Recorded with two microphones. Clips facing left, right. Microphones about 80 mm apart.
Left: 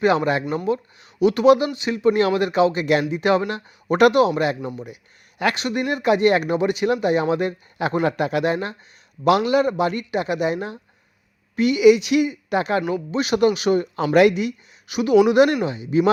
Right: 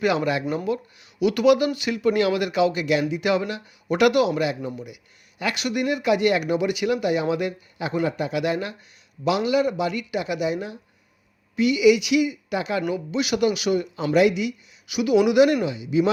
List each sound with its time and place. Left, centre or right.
0.0 s speech: left
7.8 s speech: left
9.2 s speech: left